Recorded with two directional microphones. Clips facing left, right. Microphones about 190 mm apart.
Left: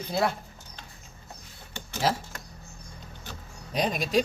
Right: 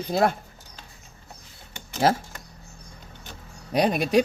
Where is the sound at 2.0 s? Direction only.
60° right (ahead or behind).